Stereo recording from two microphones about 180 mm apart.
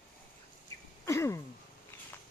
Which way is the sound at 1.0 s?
15° left (ahead or behind).